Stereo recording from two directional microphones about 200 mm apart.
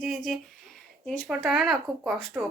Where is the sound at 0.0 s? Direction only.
Centre (ahead or behind).